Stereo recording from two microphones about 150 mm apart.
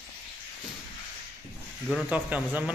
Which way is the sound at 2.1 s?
10° right (ahead or behind).